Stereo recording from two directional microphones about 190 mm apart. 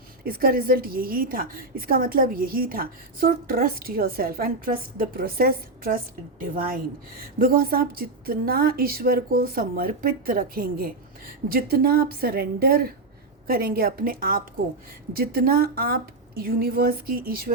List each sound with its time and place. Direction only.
0.3 s a woman's voice: 50° right (ahead or behind)
7.3 s a woman's voice: 50° right (ahead or behind)